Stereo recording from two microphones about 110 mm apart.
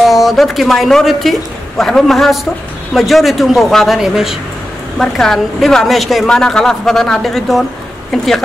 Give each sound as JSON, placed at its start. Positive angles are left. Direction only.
{"t": 0.1, "sound": "a woman's voice", "side_deg": 0}